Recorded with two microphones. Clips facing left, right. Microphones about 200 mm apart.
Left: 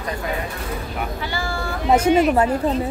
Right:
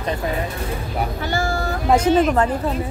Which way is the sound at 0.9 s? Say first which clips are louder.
Right 7 dB; 45° right (ahead or behind).